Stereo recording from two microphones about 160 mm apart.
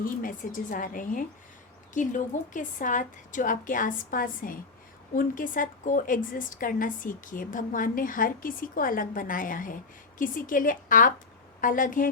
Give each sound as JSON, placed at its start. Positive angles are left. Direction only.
{"t": 0.0, "sound": "a woman's voice", "side_deg": 60}